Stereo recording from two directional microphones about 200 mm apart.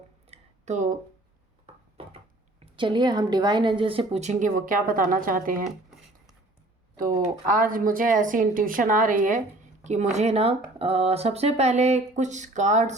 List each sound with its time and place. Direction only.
0.3 s a sound: 35° right (ahead or behind)
2.6 s speech: 25° right (ahead or behind); by 5.6 s 45° right (ahead or behind)
7.4 s a woman's voice: 45° right (ahead or behind)